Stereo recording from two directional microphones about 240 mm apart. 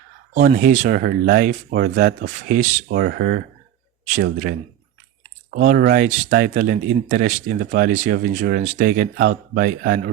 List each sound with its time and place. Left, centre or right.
0.3 s speech: right
5.5 s speech: right